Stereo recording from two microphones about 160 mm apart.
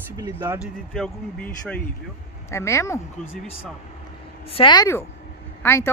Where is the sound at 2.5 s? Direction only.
15° left (ahead or behind).